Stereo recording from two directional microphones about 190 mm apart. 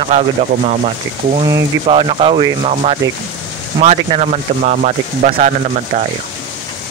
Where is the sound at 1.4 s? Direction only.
25° right (ahead or behind).